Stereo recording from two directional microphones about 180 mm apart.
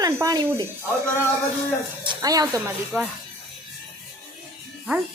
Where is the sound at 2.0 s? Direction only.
20° right (ahead or behind).